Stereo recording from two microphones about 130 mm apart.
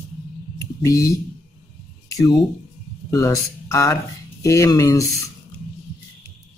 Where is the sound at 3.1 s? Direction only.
25° left (ahead or behind).